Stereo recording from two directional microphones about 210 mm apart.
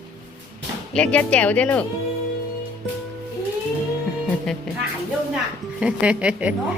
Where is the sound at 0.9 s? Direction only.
5° left (ahead or behind).